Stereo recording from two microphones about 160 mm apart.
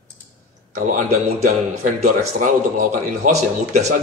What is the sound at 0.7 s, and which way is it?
A man's voice, 55° right (ahead or behind).